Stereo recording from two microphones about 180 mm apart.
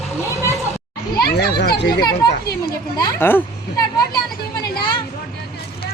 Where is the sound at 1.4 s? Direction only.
65° left (ahead or behind).